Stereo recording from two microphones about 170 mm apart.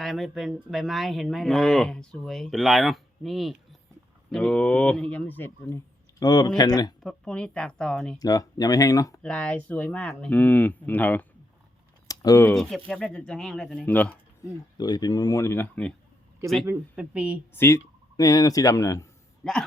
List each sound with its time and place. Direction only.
0.0 s speech: centre (ahead or behind); by 6.9 s 25° left (ahead or behind)
7.0 s speech: 5° left (ahead or behind)
8.2 s speech: 20° left (ahead or behind)
9.2 s speech: 5° left (ahead or behind)
12.0 s computer keyboard: 20° left (ahead or behind)
12.9 s speech: 5° left (ahead or behind)
14.8 s speech: 25° left (ahead or behind)
16.6 s speech: 5° right (ahead or behind)
17.5 s speech: 15° left (ahead or behind)
19.4 s speech: 5° left (ahead or behind)